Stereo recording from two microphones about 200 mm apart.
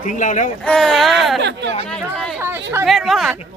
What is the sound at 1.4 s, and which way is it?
Speech, 60° right (ahead or behind).